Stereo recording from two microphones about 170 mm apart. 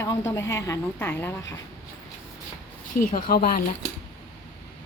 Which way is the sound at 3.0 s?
50° left (ahead or behind).